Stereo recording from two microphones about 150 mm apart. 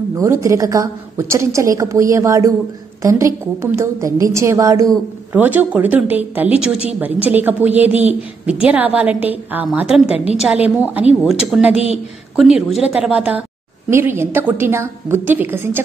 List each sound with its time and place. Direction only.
0.2 s a woman's voice: 20° right (ahead or behind)
10.1 s a woman's voice: 45° left (ahead or behind)
10.4 s a woman's voice: 5° right (ahead or behind)